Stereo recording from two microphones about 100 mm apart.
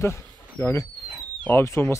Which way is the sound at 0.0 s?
30° left (ahead or behind).